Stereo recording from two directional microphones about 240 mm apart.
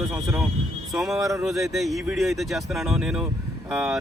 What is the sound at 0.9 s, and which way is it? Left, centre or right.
Speech, centre.